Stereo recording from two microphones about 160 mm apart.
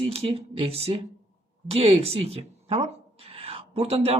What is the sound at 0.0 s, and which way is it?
Speech, 35° right (ahead or behind).